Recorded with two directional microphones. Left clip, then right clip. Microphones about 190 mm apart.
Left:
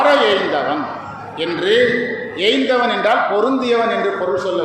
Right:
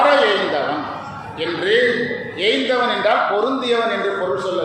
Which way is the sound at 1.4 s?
30° left (ahead or behind).